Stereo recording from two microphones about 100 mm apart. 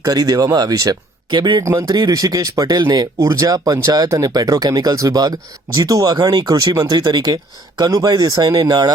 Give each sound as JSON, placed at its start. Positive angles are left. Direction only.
{"t": 0.0, "sound": "speech", "side_deg": -40}